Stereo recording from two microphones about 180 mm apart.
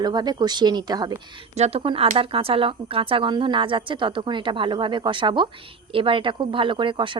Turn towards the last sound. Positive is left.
turn(degrees=-25)  # may be behind; listen again after turning